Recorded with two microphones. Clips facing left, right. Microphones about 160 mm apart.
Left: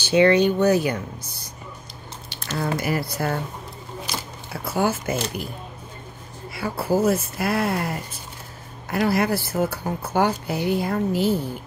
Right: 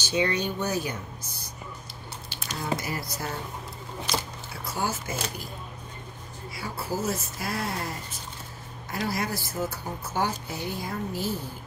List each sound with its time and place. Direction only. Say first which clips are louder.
0.0 s speech: left 10 dB; 70° left (ahead or behind)
2.5 s speech: left 7 dB; 70° left (ahead or behind)
4.7 s speech: left 8 dB; 60° left (ahead or behind)
6.5 s speech: left 10 dB; 60° left (ahead or behind)